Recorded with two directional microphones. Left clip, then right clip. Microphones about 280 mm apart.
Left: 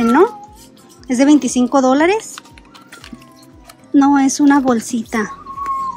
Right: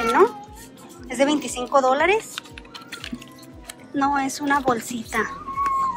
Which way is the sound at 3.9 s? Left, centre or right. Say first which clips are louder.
Left 9 dB; left.